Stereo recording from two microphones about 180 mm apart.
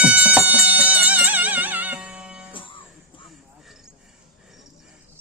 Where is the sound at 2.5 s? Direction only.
30° left (ahead or behind).